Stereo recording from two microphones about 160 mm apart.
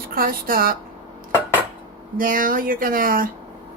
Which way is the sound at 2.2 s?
60° right (ahead or behind).